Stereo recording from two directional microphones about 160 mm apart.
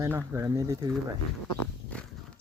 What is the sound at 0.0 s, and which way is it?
Speech, 20° right (ahead or behind).